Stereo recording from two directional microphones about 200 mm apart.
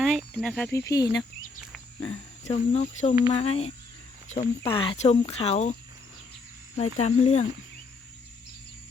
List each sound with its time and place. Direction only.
0.0 s speech: centre (ahead or behind)
2.4 s speech: 35° left (ahead or behind)
6.7 s speech: 35° left (ahead or behind)